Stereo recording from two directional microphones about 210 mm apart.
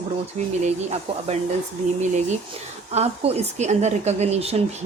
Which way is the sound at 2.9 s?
30° right (ahead or behind).